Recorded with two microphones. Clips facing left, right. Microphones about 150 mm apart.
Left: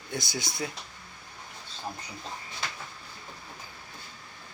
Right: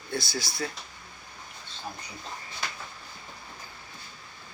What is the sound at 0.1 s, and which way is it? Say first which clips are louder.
Speech: right 2 dB; 20° left (ahead or behind).